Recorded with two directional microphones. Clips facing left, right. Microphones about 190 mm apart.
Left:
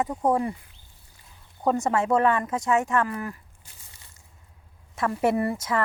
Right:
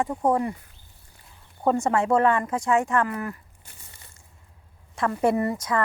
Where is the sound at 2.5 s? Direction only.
20° left (ahead or behind).